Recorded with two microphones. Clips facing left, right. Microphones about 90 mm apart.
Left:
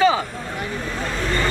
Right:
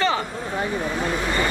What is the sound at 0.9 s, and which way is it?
Vehicle, 15° right (ahead or behind).